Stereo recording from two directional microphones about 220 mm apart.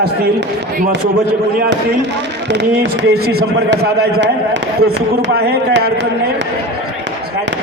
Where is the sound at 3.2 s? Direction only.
45° right (ahead or behind).